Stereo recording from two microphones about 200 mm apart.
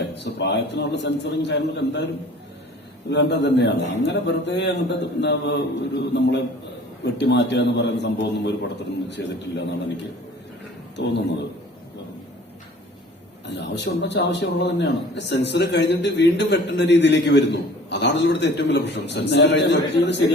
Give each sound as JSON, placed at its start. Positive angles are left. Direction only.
{"t": 0.2, "sound": "a man's voice", "side_deg": 60}
{"t": 3.1, "sound": "a man's voice", "side_deg": 60}
{"t": 13.6, "sound": "a man's voice", "side_deg": 60}